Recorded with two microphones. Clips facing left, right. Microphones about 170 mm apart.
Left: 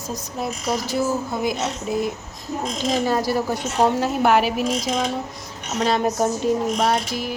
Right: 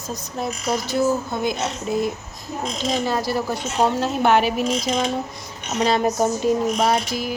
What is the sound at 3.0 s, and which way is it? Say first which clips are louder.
A woman's voice: left 2 dB; 15° left (ahead or behind).